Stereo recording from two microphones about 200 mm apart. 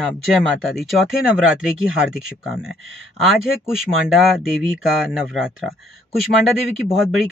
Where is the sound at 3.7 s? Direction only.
Centre (ahead or behind).